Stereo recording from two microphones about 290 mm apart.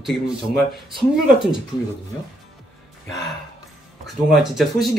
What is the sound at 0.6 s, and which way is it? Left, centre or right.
Speech, centre.